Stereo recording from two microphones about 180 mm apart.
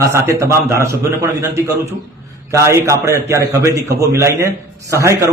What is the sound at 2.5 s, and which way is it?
A man's voice, 15° right (ahead or behind).